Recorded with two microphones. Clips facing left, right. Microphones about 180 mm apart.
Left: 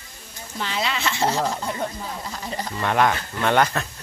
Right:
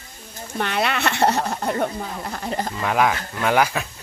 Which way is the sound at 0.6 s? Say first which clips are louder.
Right 4 dB; 60° right (ahead or behind).